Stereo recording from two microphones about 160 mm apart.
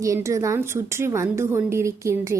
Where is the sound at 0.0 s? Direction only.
20° right (ahead or behind).